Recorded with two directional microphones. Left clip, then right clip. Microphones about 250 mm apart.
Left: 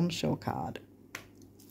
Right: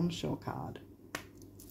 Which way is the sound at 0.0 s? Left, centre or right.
Left.